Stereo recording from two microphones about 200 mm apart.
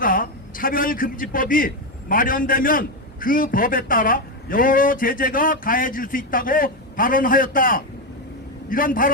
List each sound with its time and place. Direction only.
0.0 s a man's voice: 45° left (ahead or behind)